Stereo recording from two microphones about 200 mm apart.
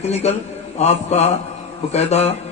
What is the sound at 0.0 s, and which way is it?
A man's voice, 35° left (ahead or behind).